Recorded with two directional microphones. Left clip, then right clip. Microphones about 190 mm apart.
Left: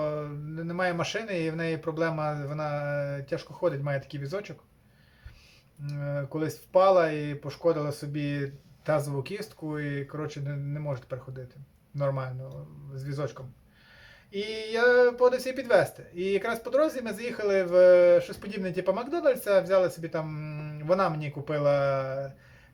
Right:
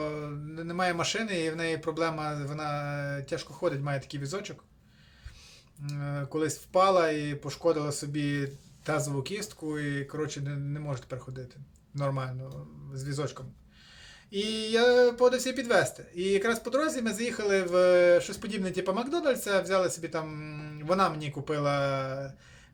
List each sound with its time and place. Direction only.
0.0 s speech: 5° right (ahead or behind)
5.8 s speech: 10° right (ahead or behind)
14.3 s speech: 5° right (ahead or behind)